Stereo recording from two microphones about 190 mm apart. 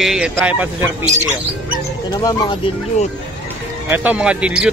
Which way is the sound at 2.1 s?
20° left (ahead or behind).